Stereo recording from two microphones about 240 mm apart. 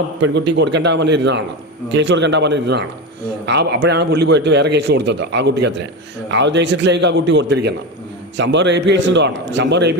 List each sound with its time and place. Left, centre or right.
0.2 s speech: right